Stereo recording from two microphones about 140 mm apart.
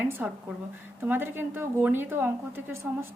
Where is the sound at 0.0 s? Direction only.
15° right (ahead or behind).